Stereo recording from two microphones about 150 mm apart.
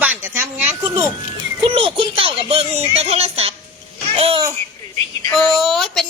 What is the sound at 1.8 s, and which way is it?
Speech, 35° right (ahead or behind).